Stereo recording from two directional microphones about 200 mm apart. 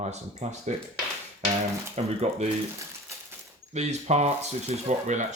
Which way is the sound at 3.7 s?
35° right (ahead or behind).